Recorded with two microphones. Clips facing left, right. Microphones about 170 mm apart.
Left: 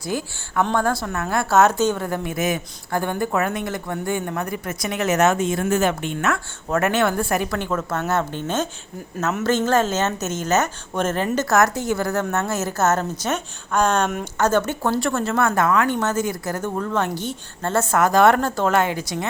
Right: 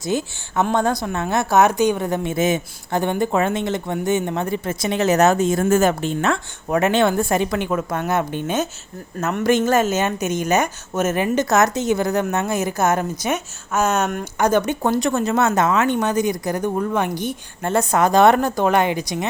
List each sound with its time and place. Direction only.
0.0 s a woman's voice: 20° right (ahead or behind)
6.7 s speech: 20° right (ahead or behind); by 14.3 s 5° right (ahead or behind)
14.3 s speech: 15° right (ahead or behind)